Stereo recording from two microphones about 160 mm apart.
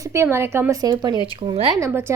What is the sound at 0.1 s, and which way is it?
A woman's voice, 15° right (ahead or behind).